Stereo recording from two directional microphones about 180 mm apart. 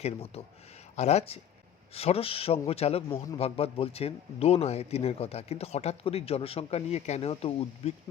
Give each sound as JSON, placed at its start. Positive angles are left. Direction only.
{"t": 0.0, "sound": "speech", "side_deg": 35}